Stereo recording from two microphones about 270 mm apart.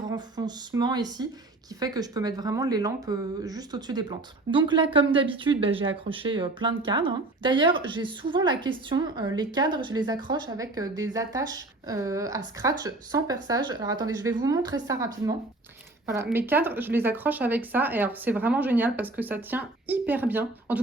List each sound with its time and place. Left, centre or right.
0.1 s speech: centre